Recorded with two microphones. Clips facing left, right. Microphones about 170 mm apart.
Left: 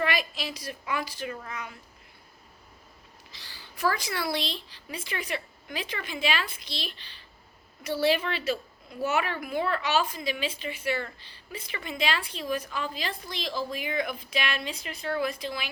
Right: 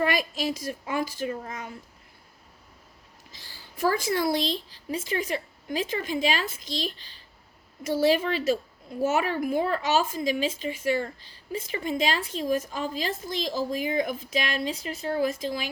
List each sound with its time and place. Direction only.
0.0 s a woman's voice: 45° right (ahead or behind)
3.3 s a woman's voice: 45° right (ahead or behind)